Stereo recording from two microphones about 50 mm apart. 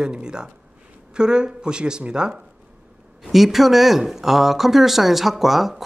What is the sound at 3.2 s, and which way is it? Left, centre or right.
Speech, centre.